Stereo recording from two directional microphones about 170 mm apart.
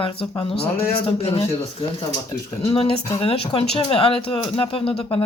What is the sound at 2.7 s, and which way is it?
Speech, 35° left (ahead or behind).